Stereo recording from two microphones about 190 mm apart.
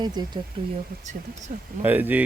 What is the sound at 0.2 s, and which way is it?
Speech, 20° right (ahead or behind).